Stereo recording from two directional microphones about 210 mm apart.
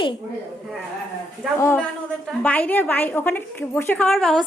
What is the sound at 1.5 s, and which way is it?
A woman's voice, 10° left (ahead or behind).